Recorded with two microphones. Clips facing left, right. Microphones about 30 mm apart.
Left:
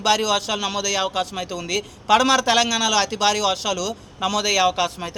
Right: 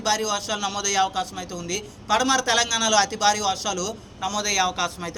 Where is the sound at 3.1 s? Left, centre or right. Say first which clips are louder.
Left 2 dB; left.